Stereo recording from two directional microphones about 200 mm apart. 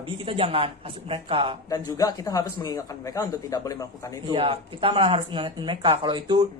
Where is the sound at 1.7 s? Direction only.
20° left (ahead or behind).